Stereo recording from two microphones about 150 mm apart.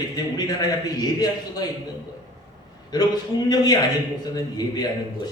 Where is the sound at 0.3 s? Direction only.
25° left (ahead or behind).